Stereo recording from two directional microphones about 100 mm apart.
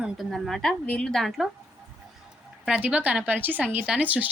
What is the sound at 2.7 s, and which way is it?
A woman's voice, 15° right (ahead or behind).